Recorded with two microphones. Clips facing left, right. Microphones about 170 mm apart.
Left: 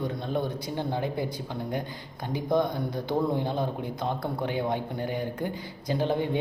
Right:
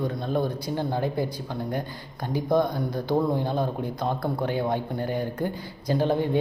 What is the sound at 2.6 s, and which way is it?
A man's voice, 20° left (ahead or behind).